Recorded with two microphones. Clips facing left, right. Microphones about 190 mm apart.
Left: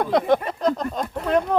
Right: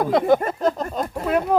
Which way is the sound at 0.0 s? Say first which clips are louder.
Right 2 dB; centre (ahead or behind).